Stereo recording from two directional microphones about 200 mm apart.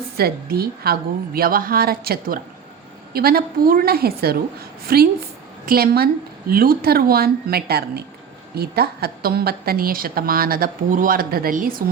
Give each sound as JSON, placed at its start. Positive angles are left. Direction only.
{"t": 0.2, "sound": "a woman's voice", "side_deg": -50}